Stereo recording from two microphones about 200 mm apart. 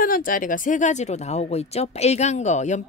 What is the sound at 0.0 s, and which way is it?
Speech, 45° left (ahead or behind).